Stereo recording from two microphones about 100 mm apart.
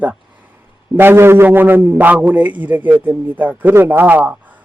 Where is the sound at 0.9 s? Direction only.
25° right (ahead or behind).